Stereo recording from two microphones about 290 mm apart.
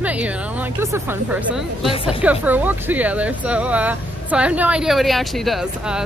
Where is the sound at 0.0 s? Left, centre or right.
Centre.